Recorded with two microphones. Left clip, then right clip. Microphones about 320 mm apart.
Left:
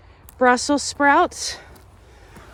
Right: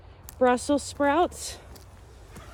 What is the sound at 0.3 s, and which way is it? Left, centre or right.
Speech, left.